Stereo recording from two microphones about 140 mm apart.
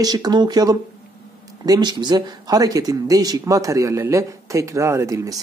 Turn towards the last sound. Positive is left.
turn(degrees=-20)  # may be behind; listen again after turning